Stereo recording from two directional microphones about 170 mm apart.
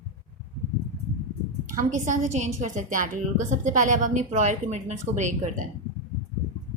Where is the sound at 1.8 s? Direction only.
45° right (ahead or behind).